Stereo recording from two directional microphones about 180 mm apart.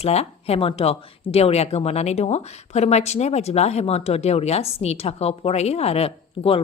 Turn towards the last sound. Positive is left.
turn(degrees=30)  # may be behind; listen again after turning